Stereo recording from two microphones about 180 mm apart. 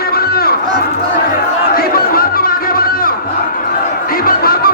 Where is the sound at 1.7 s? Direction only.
55° left (ahead or behind).